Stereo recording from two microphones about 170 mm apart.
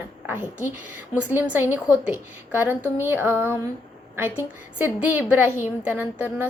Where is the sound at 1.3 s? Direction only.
10° right (ahead or behind).